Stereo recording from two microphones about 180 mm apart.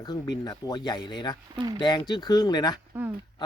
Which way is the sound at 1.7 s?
25° left (ahead or behind).